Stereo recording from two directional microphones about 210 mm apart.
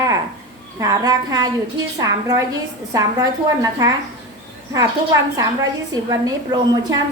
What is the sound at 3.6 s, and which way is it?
Speech, 15° right (ahead or behind).